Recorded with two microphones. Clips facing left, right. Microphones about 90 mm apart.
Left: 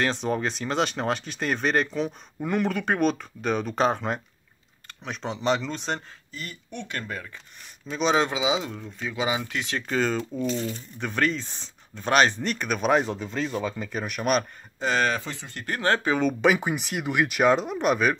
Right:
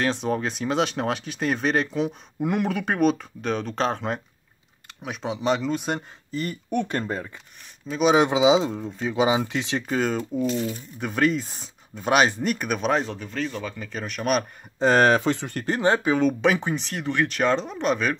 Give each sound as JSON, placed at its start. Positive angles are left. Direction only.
{"t": 0.0, "sound": "speech", "side_deg": 0}
{"t": 6.7, "sound": "speech", "side_deg": -45}
{"t": 7.0, "sound": "speech", "side_deg": -30}
{"t": 7.9, "sound": "speech", "side_deg": -10}
{"t": 8.3, "sound": "speech", "side_deg": -20}
{"t": 9.8, "sound": "speech", "side_deg": -5}
{"t": 12.9, "sound": "speech", "side_deg": 15}
{"t": 13.9, "sound": "speech", "side_deg": 5}
{"t": 14.8, "sound": "speech", "side_deg": -40}
{"t": 15.0, "sound": "speech", "side_deg": -60}
{"t": 15.6, "sound": "speech", "side_deg": -20}
{"t": 16.0, "sound": "speech", "side_deg": 0}